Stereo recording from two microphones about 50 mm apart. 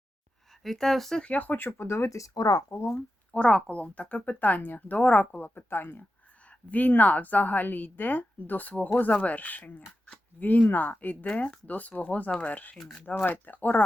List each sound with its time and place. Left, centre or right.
0.6 s speech: centre
1.2 s a woman's voice: left
1.8 s speech: left
3.3 s a woman's voice: left
6.5 s a woman's voice: left
13.2 s a woman's voice: left